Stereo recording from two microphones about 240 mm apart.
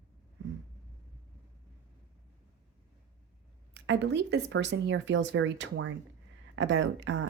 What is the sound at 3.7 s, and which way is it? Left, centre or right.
Speech, right.